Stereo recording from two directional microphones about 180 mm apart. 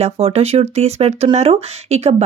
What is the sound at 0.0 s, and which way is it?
Speech, 35° right (ahead or behind).